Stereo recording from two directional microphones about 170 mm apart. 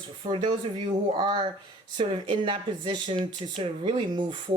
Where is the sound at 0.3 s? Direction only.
30° right (ahead or behind).